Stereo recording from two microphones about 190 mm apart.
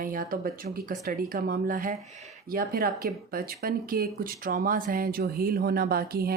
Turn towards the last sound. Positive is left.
turn(degrees=-55)  # may be behind; listen again after turning